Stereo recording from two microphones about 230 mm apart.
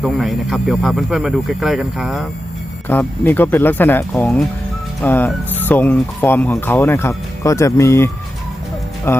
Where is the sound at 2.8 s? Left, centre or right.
Centre.